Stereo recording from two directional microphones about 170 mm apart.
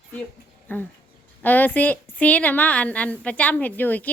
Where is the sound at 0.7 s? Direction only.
10° left (ahead or behind).